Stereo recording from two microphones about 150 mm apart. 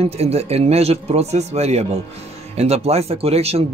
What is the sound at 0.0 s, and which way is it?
Speech, 45° right (ahead or behind).